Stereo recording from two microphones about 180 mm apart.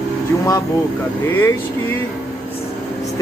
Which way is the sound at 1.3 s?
10° left (ahead or behind).